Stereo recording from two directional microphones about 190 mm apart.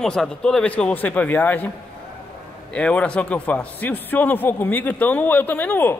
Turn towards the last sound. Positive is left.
turn(degrees=10)  # may be behind; listen again after turning